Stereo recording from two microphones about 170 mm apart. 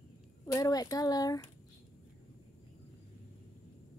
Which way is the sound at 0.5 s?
20° left (ahead or behind).